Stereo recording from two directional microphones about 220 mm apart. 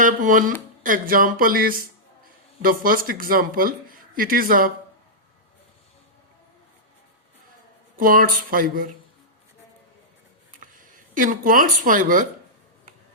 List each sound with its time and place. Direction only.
0.0 s speech: 35° right (ahead or behind)
7.9 s speech: 40° right (ahead or behind)
10.5 s speech: 40° right (ahead or behind)